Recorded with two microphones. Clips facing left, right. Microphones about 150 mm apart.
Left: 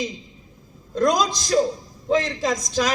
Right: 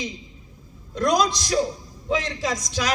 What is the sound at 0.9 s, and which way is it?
A man's voice, 50° left (ahead or behind).